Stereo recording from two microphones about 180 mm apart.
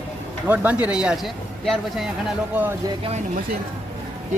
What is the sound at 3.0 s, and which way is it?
Speech, 40° right (ahead or behind).